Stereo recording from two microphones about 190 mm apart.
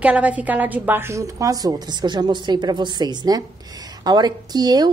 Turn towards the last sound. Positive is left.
turn(degrees=-20)  # may be behind; listen again after turning